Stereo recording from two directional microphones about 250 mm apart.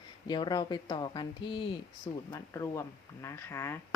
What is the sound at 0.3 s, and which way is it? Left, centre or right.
Speech, centre.